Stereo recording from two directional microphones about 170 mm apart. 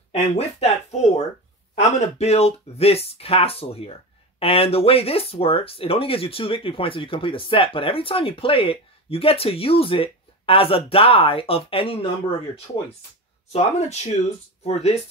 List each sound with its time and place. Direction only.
0.1 s speech: 40° left (ahead or behind)
13.5 s speech: 40° left (ahead or behind)